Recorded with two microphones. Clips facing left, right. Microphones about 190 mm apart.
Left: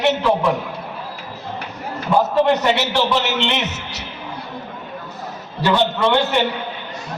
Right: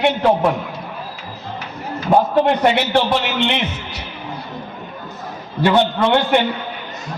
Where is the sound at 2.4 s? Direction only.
60° right (ahead or behind).